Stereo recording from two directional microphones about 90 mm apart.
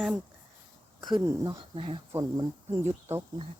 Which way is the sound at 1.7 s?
70° right (ahead or behind).